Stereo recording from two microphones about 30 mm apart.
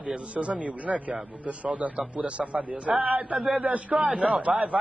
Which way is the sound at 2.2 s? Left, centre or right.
Right.